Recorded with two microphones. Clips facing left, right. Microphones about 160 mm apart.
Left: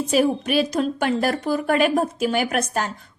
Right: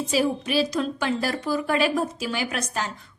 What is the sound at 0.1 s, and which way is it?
A woman's voice, 55° left (ahead or behind).